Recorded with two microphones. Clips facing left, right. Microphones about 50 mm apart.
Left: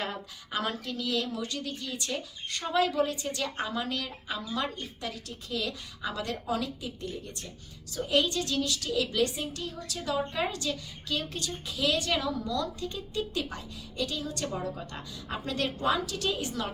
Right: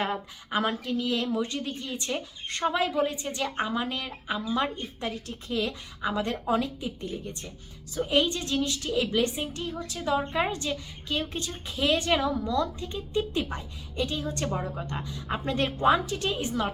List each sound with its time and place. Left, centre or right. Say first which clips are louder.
0.0 s a woman's voice: right 5 dB; right